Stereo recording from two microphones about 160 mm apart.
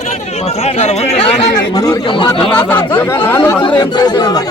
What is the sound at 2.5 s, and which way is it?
Speech, 10° left (ahead or behind).